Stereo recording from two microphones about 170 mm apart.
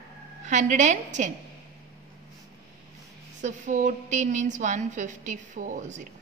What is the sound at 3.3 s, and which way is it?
A woman's voice, 45° right (ahead or behind).